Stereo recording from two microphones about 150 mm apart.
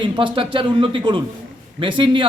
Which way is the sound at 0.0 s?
35° right (ahead or behind).